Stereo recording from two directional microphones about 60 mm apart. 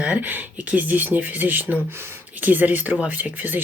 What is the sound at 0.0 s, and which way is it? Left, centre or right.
Speech, right.